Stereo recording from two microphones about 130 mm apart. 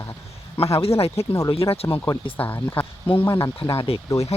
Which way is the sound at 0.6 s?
50° left (ahead or behind).